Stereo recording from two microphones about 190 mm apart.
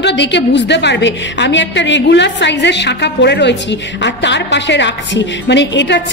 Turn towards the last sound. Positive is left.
turn(degrees=70)  # may be behind; listen again after turning